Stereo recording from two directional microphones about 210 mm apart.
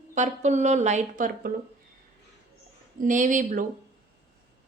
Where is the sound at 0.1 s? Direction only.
35° right (ahead or behind).